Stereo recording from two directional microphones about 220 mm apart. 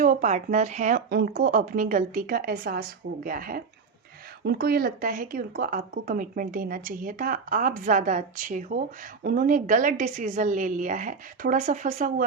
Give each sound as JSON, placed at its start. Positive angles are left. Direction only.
{"t": 0.0, "sound": "speech", "side_deg": -35}